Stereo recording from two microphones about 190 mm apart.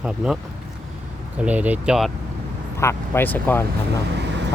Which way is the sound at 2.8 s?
15° left (ahead or behind).